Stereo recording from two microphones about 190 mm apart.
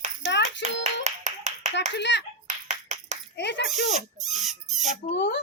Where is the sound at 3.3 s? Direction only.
65° left (ahead or behind).